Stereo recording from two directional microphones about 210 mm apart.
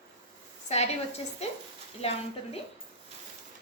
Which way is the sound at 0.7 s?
30° left (ahead or behind).